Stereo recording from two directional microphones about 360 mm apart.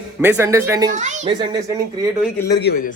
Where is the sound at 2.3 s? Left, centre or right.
Centre.